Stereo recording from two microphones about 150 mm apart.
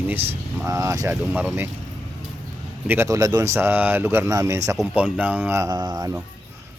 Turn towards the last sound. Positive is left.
turn(degrees=-25)  # may be behind; listen again after turning